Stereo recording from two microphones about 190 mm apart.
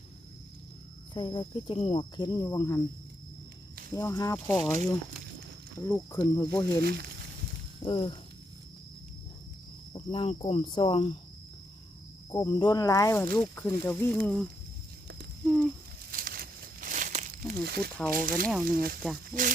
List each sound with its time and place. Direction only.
1.1 s speech: 25° left (ahead or behind)
3.9 s speech: 15° left (ahead or behind)
5.8 s speech: 15° left (ahead or behind)
6.8 s speech: 60° right (ahead or behind)
7.9 s speech: 25° left (ahead or behind)
9.9 s speech: 30° left (ahead or behind)
12.3 s speech: 20° left (ahead or behind); by 14.4 s 5° left (ahead or behind)
16.0 s crumpling: 50° right (ahead or behind)
17.6 s speech: 55° right (ahead or behind)